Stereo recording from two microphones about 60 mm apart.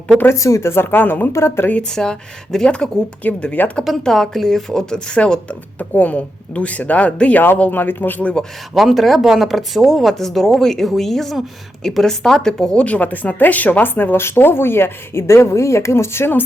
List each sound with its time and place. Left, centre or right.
0.3 s speech: left
0.6 s speech: left
1.3 s speech: left
1.9 s speech: centre
3.2 s speech: left
4.0 s speech: centre; by 8.3 s left
8.7 s speech: centre
12.8 s speech: left